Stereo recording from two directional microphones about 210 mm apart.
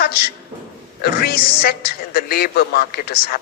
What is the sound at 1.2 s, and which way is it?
Speech, 45° left (ahead or behind).